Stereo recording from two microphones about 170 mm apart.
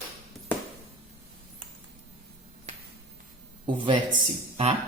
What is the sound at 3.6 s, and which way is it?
Speech, 30° right (ahead or behind).